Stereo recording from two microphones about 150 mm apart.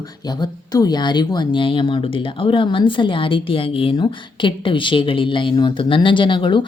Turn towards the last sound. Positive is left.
turn(degrees=35)  # may be behind; listen again after turning